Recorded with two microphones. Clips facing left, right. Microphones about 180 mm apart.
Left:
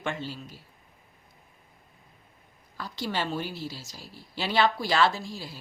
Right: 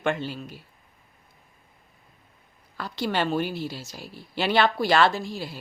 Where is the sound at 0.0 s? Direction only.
60° right (ahead or behind).